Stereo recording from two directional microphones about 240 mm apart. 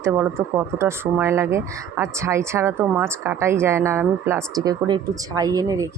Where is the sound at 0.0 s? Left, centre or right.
Centre.